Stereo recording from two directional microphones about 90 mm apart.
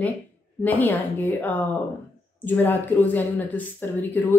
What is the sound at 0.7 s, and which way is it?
Speech, 20° left (ahead or behind).